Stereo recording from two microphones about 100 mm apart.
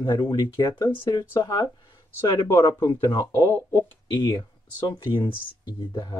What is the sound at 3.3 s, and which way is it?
Speech, 25° left (ahead or behind).